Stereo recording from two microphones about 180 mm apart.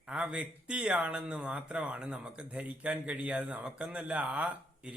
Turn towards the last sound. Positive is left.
turn(degrees=-5)  # may be behind; listen again after turning